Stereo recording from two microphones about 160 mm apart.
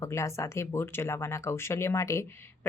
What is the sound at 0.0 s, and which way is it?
A woman's voice, 20° left (ahead or behind).